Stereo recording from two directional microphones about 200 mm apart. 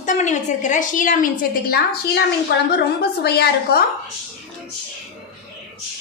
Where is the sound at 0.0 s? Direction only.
35° left (ahead or behind); by 3.8 s 55° left (ahead or behind).